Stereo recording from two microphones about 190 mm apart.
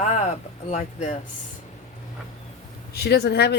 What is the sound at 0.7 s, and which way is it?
Speech, 40° left (ahead or behind).